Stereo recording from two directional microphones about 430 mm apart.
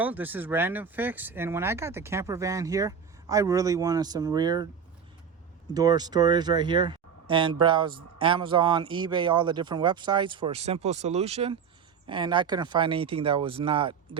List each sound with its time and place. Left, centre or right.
0.0 s speech: centre
5.7 s speech: centre